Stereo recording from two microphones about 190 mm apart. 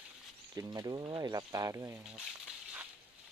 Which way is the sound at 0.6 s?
20° right (ahead or behind).